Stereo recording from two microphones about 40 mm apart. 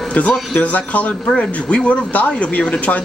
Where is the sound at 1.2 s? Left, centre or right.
Left.